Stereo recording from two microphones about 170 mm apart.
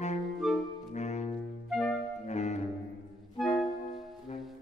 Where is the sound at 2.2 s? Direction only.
40° left (ahead or behind).